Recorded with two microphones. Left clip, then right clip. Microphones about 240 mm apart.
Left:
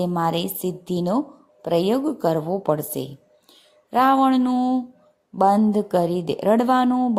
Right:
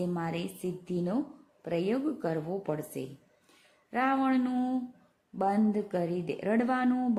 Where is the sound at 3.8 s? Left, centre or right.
Centre.